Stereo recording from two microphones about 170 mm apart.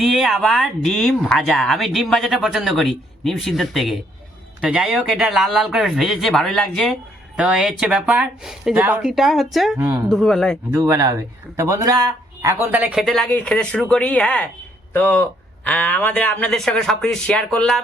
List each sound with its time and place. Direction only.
0.0 s speech: centre (ahead or behind)
9.7 s speech: 20° right (ahead or behind)
10.1 s speech: centre (ahead or behind)
10.7 s speech: 15° right (ahead or behind)
12.7 s speech: 5° right (ahead or behind)